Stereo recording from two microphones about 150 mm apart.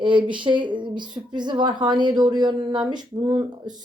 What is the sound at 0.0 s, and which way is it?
A woman's voice, 35° right (ahead or behind).